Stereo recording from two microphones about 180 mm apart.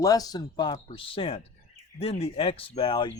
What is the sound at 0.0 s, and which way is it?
Speech, 20° left (ahead or behind).